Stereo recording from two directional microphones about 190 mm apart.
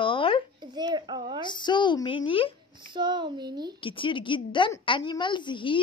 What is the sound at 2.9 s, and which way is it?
Speech, 25° right (ahead or behind).